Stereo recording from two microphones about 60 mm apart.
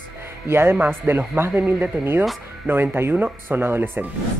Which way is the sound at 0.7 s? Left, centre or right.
Right.